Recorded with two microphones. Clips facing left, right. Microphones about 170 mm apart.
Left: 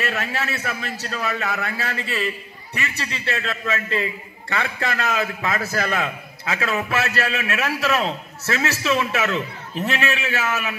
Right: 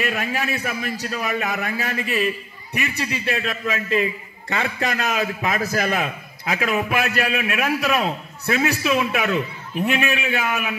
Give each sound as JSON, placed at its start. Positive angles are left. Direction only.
{"t": 0.0, "sound": "a man's voice", "side_deg": -15}